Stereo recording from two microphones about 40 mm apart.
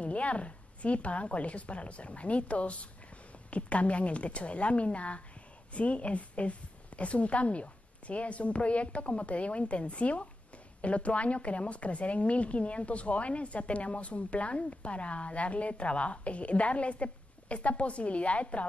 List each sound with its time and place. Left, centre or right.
0.0 s a woman's voice: left